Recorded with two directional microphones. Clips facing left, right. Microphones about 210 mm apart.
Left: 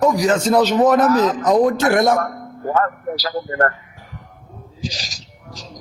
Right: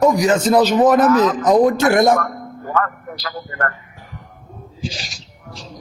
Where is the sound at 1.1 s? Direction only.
35° left (ahead or behind).